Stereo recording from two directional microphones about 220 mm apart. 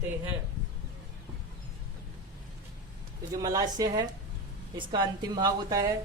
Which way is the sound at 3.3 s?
15° right (ahead or behind).